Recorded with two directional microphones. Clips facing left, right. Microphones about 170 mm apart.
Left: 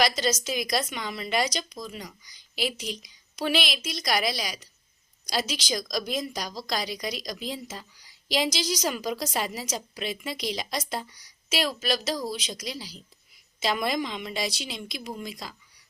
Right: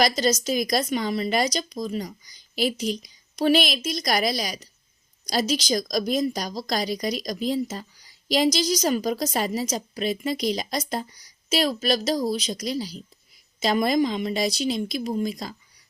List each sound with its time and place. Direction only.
0.0 s a woman's voice: 40° right (ahead or behind)